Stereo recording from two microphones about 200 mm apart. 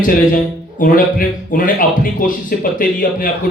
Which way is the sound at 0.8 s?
45° left (ahead or behind).